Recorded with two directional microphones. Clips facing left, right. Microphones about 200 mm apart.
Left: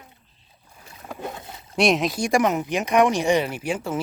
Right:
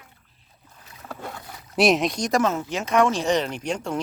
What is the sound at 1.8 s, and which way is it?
Speech, centre (ahead or behind).